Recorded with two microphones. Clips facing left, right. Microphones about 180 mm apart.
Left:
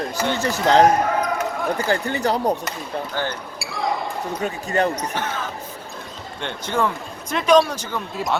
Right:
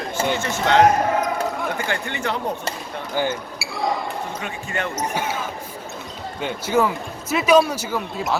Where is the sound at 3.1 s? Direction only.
15° right (ahead or behind).